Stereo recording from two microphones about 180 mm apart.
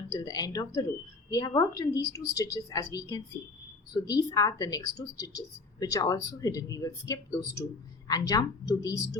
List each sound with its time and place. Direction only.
0.1 s a woman's voice: 20° left (ahead or behind)